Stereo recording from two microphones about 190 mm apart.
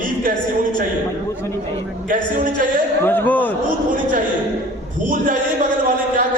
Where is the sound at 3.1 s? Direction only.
10° left (ahead or behind).